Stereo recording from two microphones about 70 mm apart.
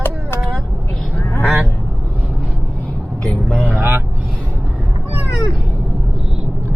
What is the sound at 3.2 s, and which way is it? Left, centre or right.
Vehicle, centre.